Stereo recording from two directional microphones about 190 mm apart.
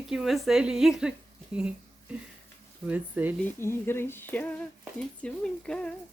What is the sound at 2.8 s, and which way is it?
Speech, 10° right (ahead or behind).